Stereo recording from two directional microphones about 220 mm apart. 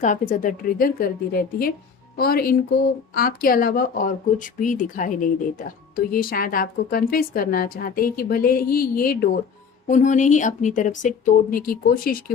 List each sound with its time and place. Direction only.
0.0 s speech: 35° left (ahead or behind)